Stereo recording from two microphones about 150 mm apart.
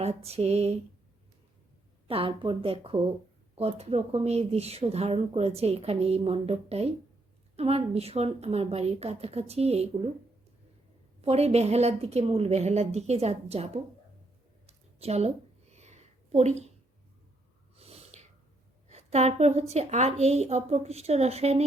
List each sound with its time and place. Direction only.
0.0 s speech: 45° right (ahead or behind)
2.0 s speech: 40° right (ahead or behind)
11.2 s speech: 45° right (ahead or behind)
14.7 s a sound: 45° right (ahead or behind)
17.7 s snort: 40° right (ahead or behind)
18.9 s speech: 45° right (ahead or behind)